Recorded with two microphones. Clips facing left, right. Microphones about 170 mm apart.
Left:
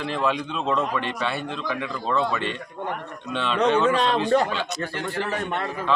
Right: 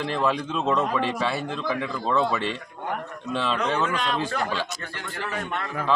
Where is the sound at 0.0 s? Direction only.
Centre (ahead or behind).